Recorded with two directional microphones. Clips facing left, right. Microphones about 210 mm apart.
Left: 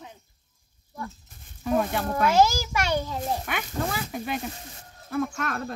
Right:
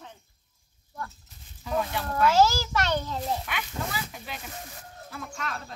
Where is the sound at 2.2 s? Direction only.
15° left (ahead or behind).